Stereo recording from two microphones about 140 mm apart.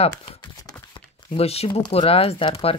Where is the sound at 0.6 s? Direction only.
25° left (ahead or behind).